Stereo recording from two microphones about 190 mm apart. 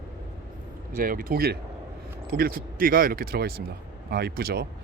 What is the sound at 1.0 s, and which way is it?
Speech, 50° right (ahead or behind).